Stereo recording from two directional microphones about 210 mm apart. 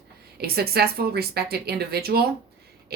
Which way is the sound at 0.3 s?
50° right (ahead or behind).